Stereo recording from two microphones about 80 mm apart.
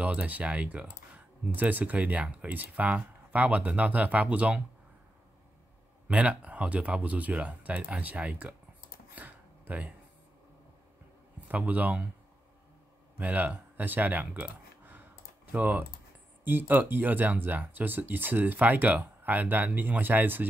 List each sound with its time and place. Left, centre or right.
0.0 s speech: centre
6.0 s speech: centre
9.1 s a sound: right
11.4 s speech: right
13.2 s a sound: centre
16.4 s speech: right